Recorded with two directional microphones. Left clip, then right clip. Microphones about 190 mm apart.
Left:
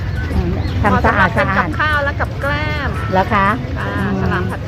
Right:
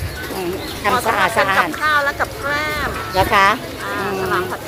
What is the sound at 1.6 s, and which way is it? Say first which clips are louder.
Speech: even; 5° right (ahead or behind).